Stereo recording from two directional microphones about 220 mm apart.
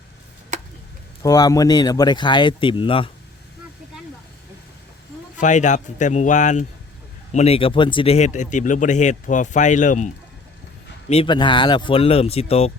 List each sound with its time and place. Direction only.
0.5 s chop: 35° right (ahead or behind)
1.2 s speech: 15° left (ahead or behind)
5.4 s speech: 35° left (ahead or behind)
11.1 s speech: 25° left (ahead or behind)